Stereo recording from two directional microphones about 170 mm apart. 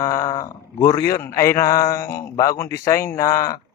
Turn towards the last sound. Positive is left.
turn(degrees=20)  # may be behind; listen again after turning